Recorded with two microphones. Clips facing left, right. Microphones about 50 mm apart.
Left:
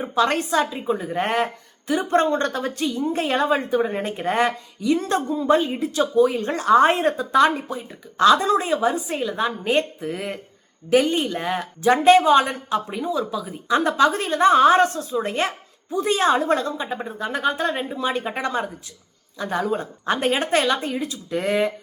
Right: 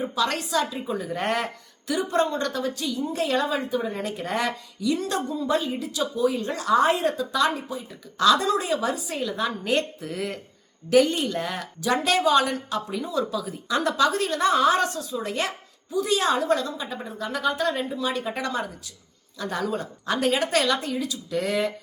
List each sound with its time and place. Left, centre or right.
0.1 s a woman's voice: left
1.9 s a woman's voice: left